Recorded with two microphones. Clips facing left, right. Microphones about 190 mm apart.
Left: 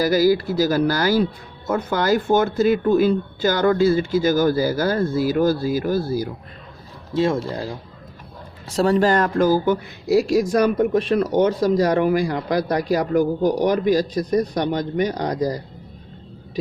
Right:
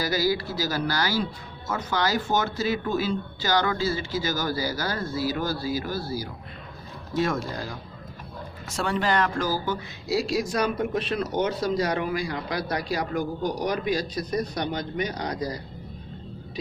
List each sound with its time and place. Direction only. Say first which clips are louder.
0.0 s speech: left 8 dB; 50° left (ahead or behind)
7.1 s speech: left 6 dB; 25° left (ahead or behind); by 15.6 s 45° left (ahead or behind)